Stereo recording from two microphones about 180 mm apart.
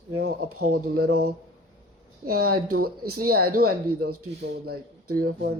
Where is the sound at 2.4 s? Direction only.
60° right (ahead or behind).